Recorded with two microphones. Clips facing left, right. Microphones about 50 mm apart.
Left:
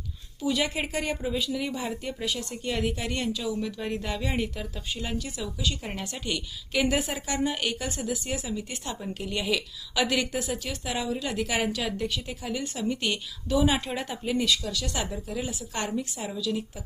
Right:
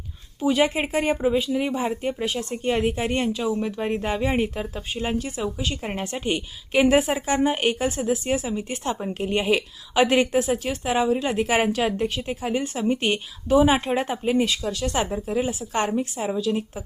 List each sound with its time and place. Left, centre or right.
0.4 s speech: right